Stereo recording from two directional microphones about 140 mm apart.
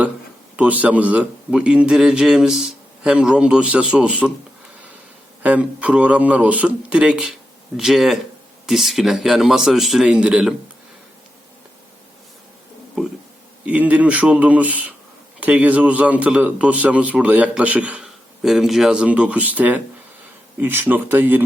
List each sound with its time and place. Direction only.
0.5 s a man's voice: 10° right (ahead or behind)
5.4 s a man's voice: 10° right (ahead or behind)
13.7 s a man's voice: 10° right (ahead or behind)